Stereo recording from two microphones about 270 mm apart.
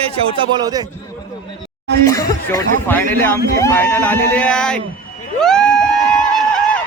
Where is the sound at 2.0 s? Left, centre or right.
Centre.